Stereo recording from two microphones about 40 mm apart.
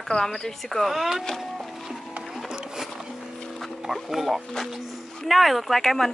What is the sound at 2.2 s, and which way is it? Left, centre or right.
Music, centre.